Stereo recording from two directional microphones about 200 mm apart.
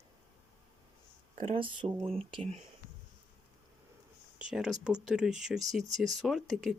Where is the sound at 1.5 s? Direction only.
25° right (ahead or behind).